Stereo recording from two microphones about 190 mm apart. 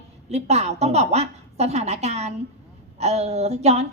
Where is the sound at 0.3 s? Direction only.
35° right (ahead or behind).